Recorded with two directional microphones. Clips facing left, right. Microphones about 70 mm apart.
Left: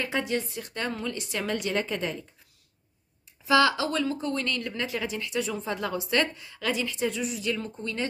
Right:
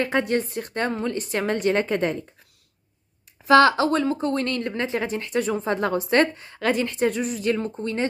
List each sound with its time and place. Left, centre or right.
0.0 s a woman's voice: right
3.4 s a woman's voice: right